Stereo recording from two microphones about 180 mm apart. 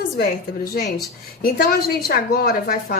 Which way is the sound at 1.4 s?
55° left (ahead or behind).